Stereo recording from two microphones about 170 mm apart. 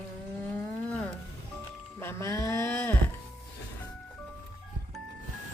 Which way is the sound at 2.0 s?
15° left (ahead or behind).